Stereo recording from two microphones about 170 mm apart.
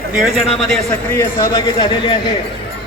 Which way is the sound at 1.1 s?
20° left (ahead or behind).